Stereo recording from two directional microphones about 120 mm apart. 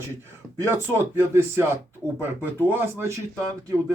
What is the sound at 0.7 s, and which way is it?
Speech, 20° right (ahead or behind).